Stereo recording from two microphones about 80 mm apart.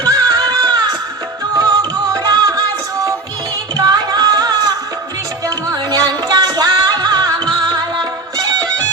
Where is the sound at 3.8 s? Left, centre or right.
Right.